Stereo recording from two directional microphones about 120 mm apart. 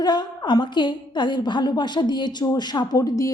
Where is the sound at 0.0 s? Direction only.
35° left (ahead or behind).